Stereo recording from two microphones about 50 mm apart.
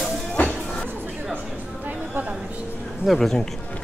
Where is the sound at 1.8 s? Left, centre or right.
Right.